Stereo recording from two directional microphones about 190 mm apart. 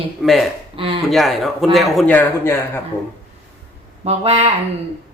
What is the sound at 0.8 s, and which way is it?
Speech, 25° right (ahead or behind).